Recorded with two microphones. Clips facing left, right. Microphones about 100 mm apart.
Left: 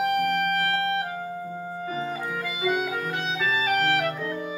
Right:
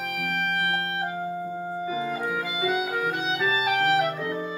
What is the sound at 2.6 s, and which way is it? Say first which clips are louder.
Clarinet: even; centre (ahead or behind).